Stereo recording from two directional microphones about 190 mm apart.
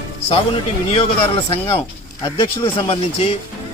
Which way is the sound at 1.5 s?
30° left (ahead or behind).